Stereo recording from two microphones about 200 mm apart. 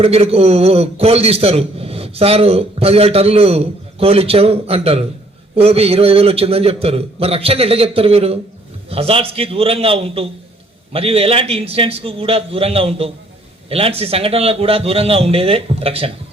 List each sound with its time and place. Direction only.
0.0 s a man's voice: 30° right (ahead or behind)